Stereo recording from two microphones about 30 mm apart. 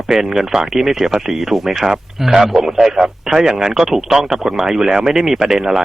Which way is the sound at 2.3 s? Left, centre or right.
Centre.